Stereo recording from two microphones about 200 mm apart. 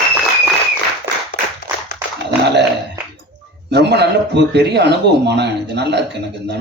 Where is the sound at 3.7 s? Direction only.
55° right (ahead or behind).